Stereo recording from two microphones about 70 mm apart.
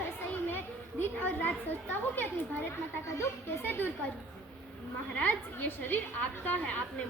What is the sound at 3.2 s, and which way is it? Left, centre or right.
Speech, left.